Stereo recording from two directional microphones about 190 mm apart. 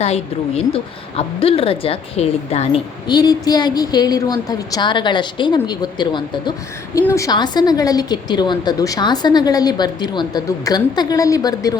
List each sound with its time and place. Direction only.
0.0 s a woman's voice: 35° left (ahead or behind); by 11.7 s 20° left (ahead or behind)